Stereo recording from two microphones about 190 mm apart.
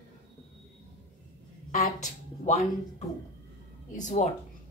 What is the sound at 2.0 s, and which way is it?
Speech, 35° left (ahead or behind).